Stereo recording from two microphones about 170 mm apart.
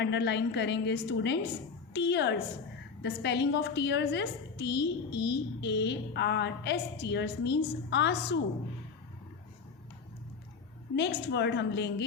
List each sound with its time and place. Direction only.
0.0 s a woman's voice: 90° left
10.9 s a woman's voice: 85° left